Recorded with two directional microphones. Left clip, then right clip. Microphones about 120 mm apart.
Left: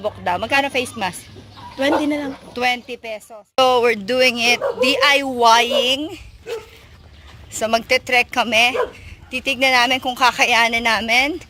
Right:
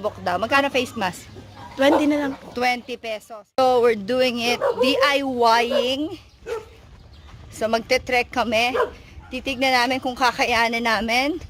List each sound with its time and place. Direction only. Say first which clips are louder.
0.0 s speech: left 2 dB; 30° right (ahead or behind)
3.5 s speech: left 2 dB; 5° right (ahead or behind)
4.8 s speech: left 3 dB; 15° right (ahead or behind)
5.1 s speech: left 4 dB; 5° right (ahead or behind)
7.6 s speech: left 3 dB; 10° right (ahead or behind)